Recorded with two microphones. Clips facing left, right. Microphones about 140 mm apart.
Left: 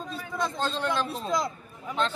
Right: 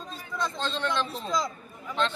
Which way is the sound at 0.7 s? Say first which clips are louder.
Left 1 dB; 10° left (ahead or behind).